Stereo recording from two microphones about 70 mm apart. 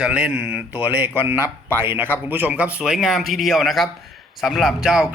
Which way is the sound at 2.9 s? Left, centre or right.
Centre.